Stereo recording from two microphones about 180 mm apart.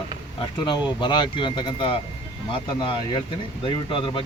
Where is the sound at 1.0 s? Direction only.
25° left (ahead or behind).